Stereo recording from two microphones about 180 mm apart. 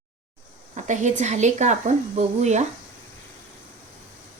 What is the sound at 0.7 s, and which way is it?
Speech, 40° right (ahead or behind).